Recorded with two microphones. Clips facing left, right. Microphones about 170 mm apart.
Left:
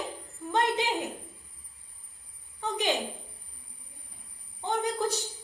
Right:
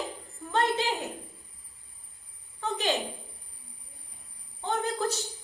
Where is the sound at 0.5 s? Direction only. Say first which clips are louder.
Even; 15° left (ahead or behind).